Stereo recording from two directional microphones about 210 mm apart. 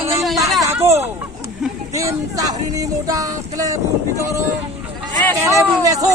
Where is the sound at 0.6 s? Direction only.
10° right (ahead or behind).